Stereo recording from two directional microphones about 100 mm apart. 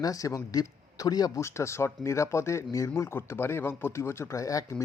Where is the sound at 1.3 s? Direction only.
30° left (ahead or behind).